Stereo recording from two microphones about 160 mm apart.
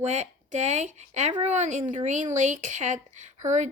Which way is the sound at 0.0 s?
45° right (ahead or behind).